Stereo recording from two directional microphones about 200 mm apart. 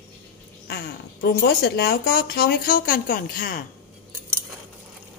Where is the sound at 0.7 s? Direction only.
55° left (ahead or behind).